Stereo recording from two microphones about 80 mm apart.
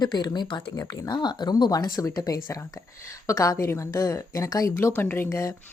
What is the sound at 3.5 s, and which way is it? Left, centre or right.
Speech, left.